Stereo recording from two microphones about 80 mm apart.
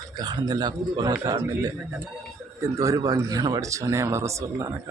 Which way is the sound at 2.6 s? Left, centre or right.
Right.